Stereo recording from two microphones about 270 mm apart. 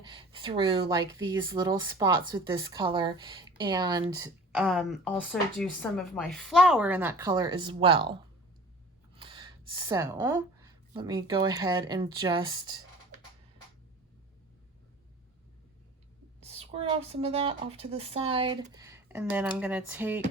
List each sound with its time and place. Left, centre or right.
0.1 s speech: centre
9.1 s a sound: centre
10.9 s speech: centre
16.4 s a woman's voice: right